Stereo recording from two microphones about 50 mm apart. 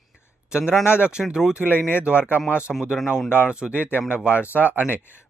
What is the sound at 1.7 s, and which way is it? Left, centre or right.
Speech, left.